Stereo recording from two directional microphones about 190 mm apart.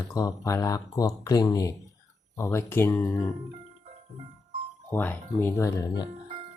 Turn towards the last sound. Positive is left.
turn(degrees=15)  # may be behind; listen again after turning